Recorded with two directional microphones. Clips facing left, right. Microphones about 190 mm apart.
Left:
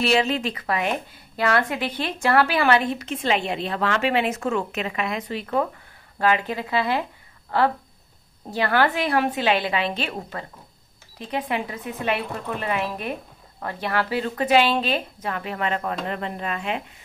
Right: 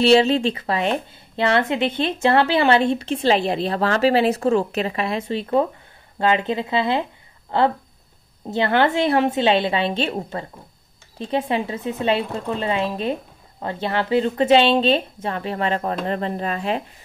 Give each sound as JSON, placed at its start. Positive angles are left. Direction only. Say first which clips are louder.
{"t": 0.0, "sound": "speech", "louder": "right 6 dB", "side_deg": -30}